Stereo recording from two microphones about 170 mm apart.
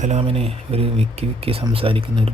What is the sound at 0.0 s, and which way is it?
A man's voice, 40° right (ahead or behind).